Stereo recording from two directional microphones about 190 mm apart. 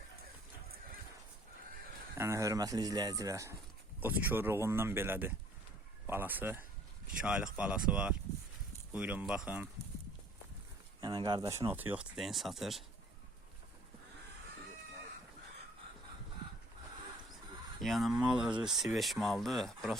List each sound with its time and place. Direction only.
2.1 s speech: 15° right (ahead or behind)
11.0 s speech: 20° right (ahead or behind); by 12.8 s centre (ahead or behind)
17.7 s speech: centre (ahead or behind)